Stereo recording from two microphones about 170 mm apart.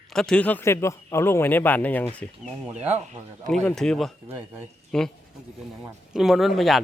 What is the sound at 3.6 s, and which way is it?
Speech, 5° left (ahead or behind).